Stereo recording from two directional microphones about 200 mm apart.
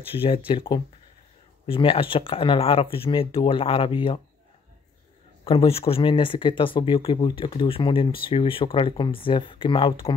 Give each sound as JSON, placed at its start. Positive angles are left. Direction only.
{"t": 0.1, "sound": "speech", "side_deg": 30}
{"t": 5.4, "sound": "speech", "side_deg": 30}